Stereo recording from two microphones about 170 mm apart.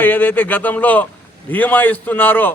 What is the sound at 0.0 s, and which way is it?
A man's voice, 10° left (ahead or behind).